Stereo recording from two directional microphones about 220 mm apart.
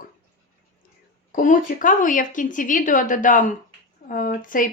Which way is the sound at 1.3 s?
35° left (ahead or behind).